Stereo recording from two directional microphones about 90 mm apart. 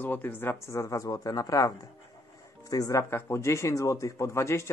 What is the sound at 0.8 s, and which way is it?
Speech, 40° left (ahead or behind).